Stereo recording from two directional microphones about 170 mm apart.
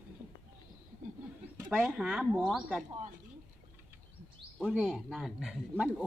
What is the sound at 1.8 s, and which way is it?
Speech, 5° right (ahead or behind).